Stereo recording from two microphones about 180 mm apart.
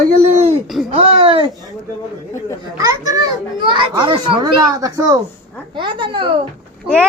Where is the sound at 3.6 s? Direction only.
25° right (ahead or behind).